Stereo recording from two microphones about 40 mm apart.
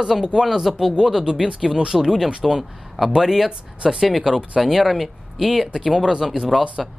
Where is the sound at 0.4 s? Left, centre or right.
Centre.